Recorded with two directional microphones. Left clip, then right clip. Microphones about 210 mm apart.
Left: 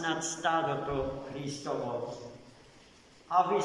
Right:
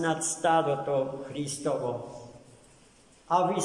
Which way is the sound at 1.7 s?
45° right (ahead or behind).